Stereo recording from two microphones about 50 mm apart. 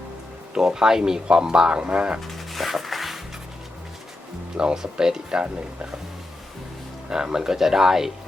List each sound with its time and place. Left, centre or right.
0.5 s speech: centre
2.2 s music: centre
4.5 s speech: centre
7.1 s speech: centre